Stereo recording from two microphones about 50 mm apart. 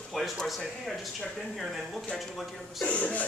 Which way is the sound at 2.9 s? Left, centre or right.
Left.